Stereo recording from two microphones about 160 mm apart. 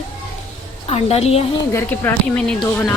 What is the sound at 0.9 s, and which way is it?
Speech, 40° left (ahead or behind).